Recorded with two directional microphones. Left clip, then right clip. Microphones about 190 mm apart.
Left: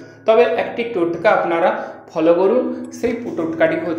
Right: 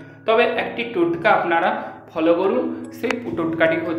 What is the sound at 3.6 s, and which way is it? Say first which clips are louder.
Speech: left 2 dB; 20° left (ahead or behind).